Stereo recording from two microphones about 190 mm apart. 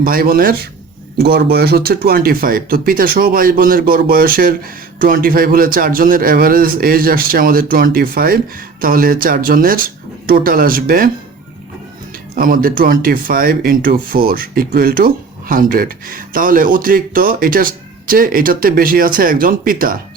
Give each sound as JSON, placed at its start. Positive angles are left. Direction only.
{"t": 0.0, "sound": "speech", "side_deg": -50}
{"t": 12.4, "sound": "speech", "side_deg": -50}